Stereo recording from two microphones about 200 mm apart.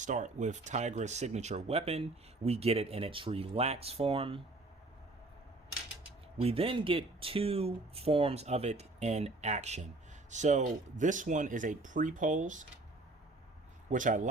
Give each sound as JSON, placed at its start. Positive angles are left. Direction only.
{"t": 0.0, "sound": "speech", "side_deg": -40}
{"t": 6.4, "sound": "speech", "side_deg": -30}
{"t": 13.9, "sound": "speech", "side_deg": -40}